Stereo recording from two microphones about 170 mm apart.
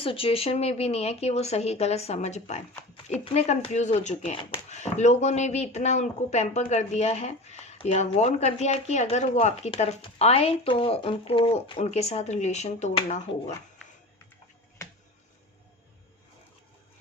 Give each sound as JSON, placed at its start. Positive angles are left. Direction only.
{"t": 0.0, "sound": "speech", "side_deg": 35}